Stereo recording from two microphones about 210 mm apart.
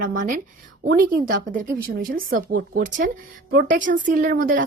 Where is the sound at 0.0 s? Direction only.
40° right (ahead or behind).